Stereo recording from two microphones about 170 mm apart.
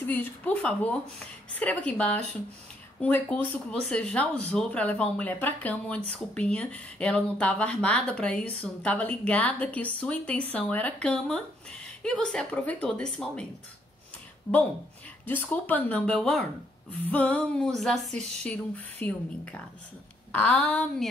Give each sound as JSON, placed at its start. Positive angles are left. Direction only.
{"t": 0.0, "sound": "a woman's voice", "side_deg": 10}